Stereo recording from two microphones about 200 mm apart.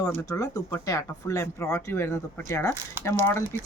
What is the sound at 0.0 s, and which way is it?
A woman's voice, 15° left (ahead or behind).